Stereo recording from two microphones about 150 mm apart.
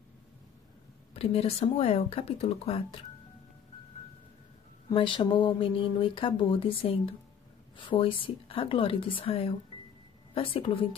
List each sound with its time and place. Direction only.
1.1 s speech: 40° left (ahead or behind)
4.8 s speech: 35° left (ahead or behind)